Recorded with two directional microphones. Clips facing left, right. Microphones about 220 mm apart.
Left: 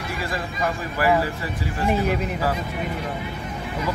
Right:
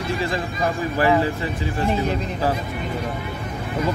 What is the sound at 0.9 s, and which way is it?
Speech, 25° right (ahead or behind).